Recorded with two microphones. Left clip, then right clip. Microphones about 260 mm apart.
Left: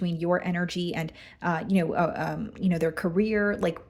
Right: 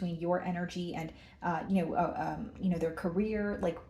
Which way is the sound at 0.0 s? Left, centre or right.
Left.